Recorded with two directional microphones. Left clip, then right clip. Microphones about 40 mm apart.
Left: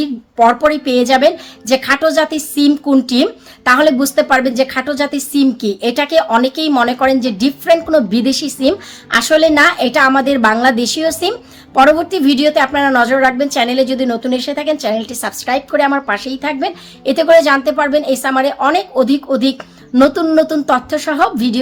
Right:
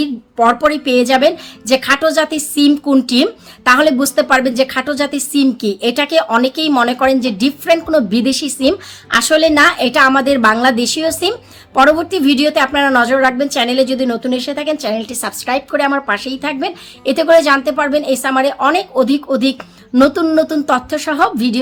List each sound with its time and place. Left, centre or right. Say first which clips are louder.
0.0 s a sound: left 2 dB; right
0.7 s a woman's voice: even; right
9.2 s a woman's voice: left 1 dB; right
12.5 s a woman's voice: left 1 dB; right
13.1 s a woman's voice: left 1 dB; right
14.2 s speech: left 1 dB; centre
14.8 s a woman's voice: left 2 dB; right